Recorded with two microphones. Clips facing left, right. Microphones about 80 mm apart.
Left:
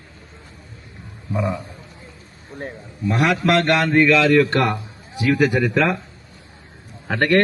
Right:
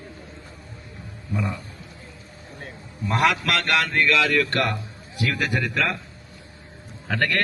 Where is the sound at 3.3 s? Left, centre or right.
Left.